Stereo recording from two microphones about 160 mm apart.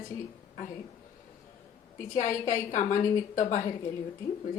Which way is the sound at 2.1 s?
55° left (ahead or behind).